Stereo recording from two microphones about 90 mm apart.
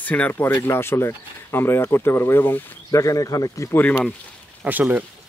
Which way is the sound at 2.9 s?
40° left (ahead or behind).